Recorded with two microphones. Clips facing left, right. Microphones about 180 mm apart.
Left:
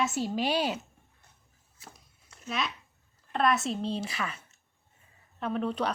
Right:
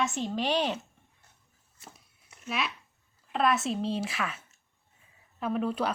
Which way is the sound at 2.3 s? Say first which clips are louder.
Left 1 dB; 20° right (ahead or behind).